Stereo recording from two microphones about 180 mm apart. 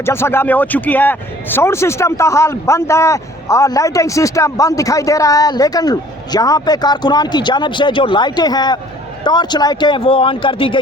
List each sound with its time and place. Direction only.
0.0 s a man's voice: 15° left (ahead or behind); by 10.8 s 30° left (ahead or behind)